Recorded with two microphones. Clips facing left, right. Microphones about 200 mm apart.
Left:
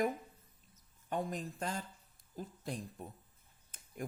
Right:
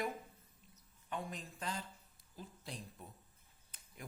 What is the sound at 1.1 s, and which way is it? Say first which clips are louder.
A woman's voice: left 7 dB; 45° left (ahead or behind).